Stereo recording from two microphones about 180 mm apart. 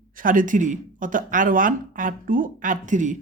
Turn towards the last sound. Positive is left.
turn(degrees=-45)  # may be behind; listen again after turning